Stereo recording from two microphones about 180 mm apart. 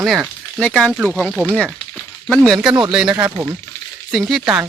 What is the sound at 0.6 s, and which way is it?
Speech, 5° left (ahead or behind).